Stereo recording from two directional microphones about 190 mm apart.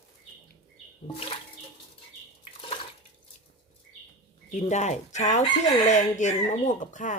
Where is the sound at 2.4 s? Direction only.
30° left (ahead or behind).